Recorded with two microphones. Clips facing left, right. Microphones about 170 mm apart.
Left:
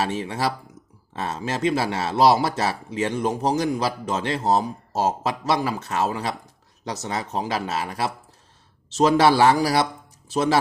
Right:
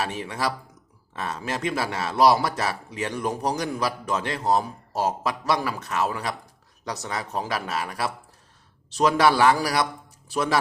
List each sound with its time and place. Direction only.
0.0 s a man's voice: 30° left (ahead or behind)